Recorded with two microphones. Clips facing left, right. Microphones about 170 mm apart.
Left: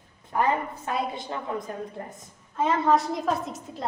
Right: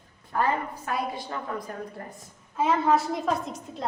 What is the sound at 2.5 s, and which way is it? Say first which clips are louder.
A woman's voice: even; 5° right (ahead or behind).